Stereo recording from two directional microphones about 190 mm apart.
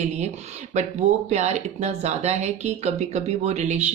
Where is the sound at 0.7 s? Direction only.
35° right (ahead or behind).